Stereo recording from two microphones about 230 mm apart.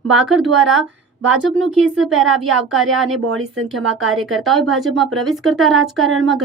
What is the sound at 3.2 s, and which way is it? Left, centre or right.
Speech, right.